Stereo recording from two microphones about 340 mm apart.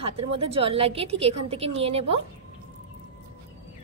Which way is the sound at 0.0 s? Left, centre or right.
Centre.